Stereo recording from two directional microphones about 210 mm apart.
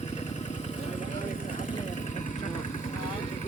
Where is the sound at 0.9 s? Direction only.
35° left (ahead or behind).